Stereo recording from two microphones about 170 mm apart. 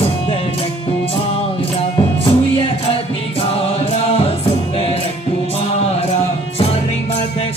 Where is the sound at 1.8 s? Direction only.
30° left (ahead or behind).